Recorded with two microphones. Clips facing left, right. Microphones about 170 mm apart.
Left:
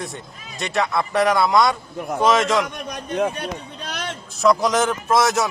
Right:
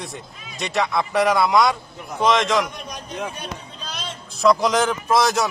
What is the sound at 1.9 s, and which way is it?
Speech, 55° left (ahead or behind).